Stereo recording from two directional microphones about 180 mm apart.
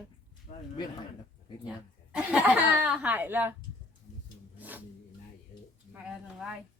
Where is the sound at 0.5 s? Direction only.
50° left (ahead or behind).